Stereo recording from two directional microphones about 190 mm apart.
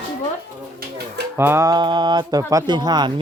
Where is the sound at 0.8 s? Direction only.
55° right (ahead or behind).